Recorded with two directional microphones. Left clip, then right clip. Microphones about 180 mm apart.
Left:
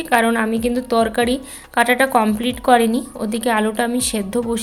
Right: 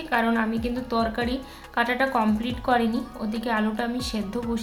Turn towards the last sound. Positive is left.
turn(degrees=45)  # may be behind; listen again after turning